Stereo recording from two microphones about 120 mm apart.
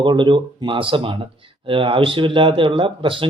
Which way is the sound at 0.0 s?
40° right (ahead or behind).